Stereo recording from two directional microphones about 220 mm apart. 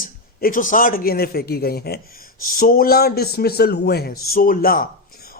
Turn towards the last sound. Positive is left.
turn(degrees=40)  # may be behind; listen again after turning